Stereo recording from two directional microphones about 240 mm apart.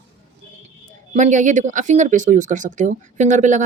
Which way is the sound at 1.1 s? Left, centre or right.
Right.